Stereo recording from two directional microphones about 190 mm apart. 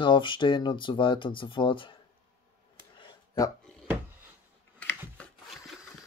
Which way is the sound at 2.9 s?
20° left (ahead or behind).